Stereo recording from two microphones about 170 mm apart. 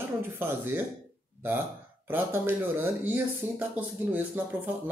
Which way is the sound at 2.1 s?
10° right (ahead or behind).